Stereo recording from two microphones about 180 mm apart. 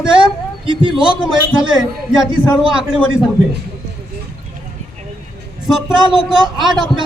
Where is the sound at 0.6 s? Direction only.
25° right (ahead or behind).